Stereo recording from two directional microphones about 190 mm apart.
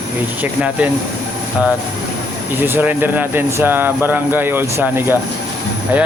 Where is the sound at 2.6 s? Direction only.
10° right (ahead or behind).